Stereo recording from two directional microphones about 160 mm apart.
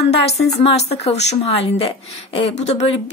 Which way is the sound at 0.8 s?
45° left (ahead or behind).